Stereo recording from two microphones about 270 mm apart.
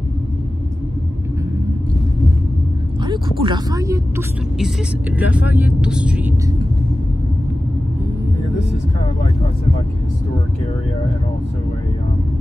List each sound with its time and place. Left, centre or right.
3.1 s speech: centre